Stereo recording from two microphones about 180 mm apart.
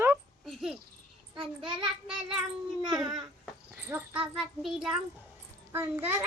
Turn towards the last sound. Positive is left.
turn(degrees=-10)  # may be behind; listen again after turning